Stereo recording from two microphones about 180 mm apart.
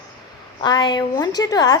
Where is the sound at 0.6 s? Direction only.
25° left (ahead or behind).